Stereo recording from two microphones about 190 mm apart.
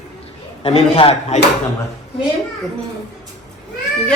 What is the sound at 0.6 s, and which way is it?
Speech, 30° left (ahead or behind).